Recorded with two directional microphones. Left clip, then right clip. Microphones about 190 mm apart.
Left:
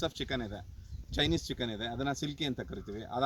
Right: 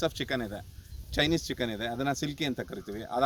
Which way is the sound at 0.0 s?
20° right (ahead or behind).